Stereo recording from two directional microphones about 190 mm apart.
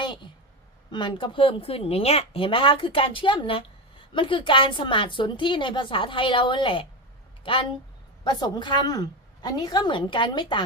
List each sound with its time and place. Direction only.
0.9 s speech: 25° left (ahead or behind)